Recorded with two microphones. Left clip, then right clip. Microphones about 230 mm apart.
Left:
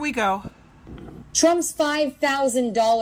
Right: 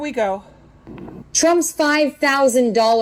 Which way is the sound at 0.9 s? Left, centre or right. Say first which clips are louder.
Right 4 dB; right.